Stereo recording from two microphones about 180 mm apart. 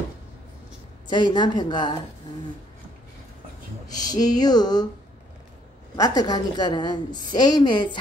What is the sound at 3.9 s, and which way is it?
Speech, 20° left (ahead or behind).